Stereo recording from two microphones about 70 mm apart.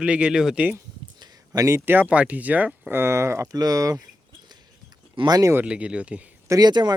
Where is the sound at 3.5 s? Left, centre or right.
Right.